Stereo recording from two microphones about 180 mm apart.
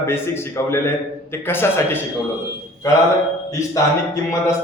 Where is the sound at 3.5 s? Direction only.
15° left (ahead or behind).